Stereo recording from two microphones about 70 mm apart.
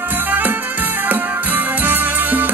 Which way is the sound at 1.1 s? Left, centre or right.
Right.